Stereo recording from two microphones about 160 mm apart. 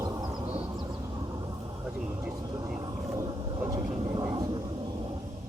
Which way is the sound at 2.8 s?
25° right (ahead or behind).